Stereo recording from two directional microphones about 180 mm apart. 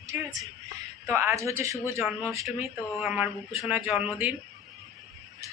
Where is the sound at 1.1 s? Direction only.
15° right (ahead or behind).